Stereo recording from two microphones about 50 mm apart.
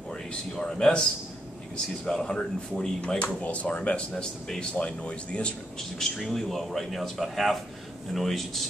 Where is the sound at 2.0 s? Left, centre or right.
Centre.